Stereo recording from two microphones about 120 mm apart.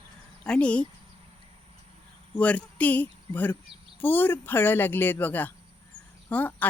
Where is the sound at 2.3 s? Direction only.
10° left (ahead or behind).